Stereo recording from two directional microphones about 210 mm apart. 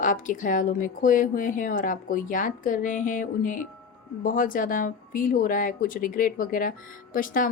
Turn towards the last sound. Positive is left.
turn(degrees=40)  # may be behind; listen again after turning